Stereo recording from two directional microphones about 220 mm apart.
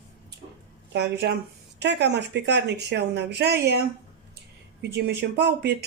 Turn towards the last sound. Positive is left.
turn(degrees=-50)  # may be behind; listen again after turning